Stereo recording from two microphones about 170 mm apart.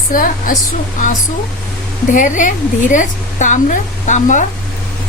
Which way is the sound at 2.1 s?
50° left (ahead or behind).